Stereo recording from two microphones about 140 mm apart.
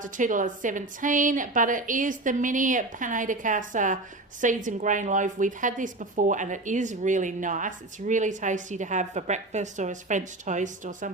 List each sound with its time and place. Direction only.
0.0 s a woman's voice: 65° right (ahead or behind)